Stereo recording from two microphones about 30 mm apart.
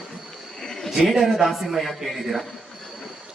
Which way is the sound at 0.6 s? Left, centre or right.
Centre.